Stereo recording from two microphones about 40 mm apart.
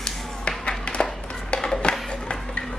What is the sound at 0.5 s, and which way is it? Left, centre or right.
Tap, left.